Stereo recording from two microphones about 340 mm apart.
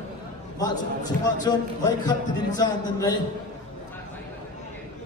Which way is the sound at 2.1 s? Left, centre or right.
Centre.